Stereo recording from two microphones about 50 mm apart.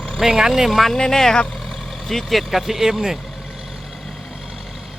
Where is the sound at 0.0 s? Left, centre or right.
Centre.